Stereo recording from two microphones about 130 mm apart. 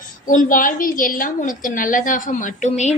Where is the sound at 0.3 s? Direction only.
90° left.